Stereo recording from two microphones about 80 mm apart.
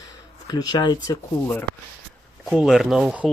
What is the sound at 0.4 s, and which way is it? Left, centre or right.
Speech, left.